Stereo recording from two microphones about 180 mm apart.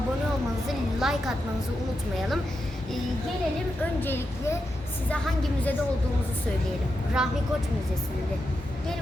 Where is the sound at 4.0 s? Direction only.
10° left (ahead or behind).